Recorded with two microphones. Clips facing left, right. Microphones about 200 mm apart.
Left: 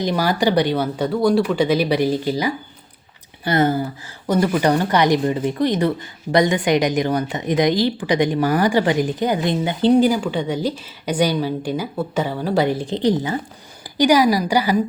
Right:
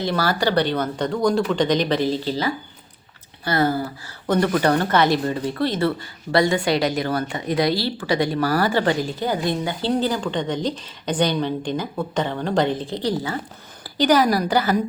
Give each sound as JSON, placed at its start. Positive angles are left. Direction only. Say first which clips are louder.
{"t": 0.0, "sound": "speech", "louder": "left 3 dB", "side_deg": 15}
{"t": 4.3, "sound": "speech", "louder": "left 1 dB", "side_deg": 10}